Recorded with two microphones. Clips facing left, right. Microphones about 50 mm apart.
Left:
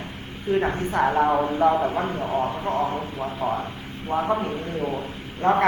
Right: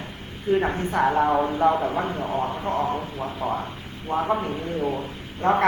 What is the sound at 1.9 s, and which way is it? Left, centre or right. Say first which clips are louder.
Speech: even; right.